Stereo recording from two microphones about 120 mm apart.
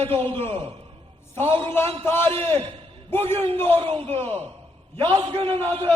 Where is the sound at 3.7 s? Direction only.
50° right (ahead or behind).